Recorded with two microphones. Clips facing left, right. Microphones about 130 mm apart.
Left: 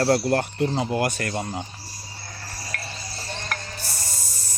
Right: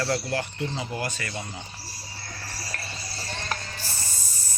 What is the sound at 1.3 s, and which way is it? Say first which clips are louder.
Speech: left 7 dB; 45° left (ahead or behind).